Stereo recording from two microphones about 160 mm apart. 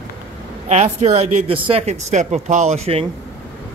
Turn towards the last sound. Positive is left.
turn(degrees=-40)  # may be behind; listen again after turning